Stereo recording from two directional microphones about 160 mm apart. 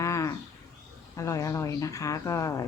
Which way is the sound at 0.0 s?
20° left (ahead or behind).